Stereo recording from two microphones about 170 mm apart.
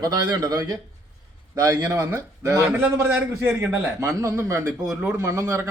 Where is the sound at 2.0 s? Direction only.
15° right (ahead or behind).